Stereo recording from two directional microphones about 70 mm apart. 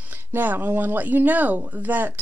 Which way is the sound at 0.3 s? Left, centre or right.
Right.